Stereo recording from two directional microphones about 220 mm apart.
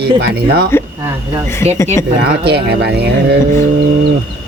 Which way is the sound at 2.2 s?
45° right (ahead or behind).